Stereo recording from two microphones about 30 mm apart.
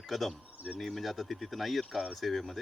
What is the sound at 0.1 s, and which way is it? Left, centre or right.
Speech, centre.